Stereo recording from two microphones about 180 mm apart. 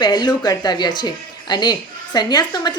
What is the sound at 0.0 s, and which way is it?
A woman's voice, 25° left (ahead or behind).